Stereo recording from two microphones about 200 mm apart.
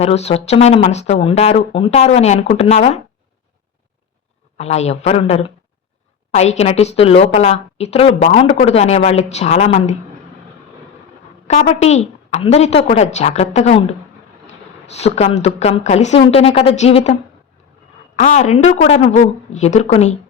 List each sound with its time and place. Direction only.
0.0 s a woman's voice: 30° left (ahead or behind)
4.5 s a woman's voice: 35° left (ahead or behind)
11.4 s a woman's voice: 35° left (ahead or behind)
18.2 s a woman's voice: 35° left (ahead or behind)